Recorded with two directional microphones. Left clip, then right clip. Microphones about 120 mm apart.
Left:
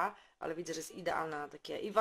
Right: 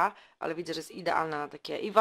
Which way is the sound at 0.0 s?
45° right (ahead or behind).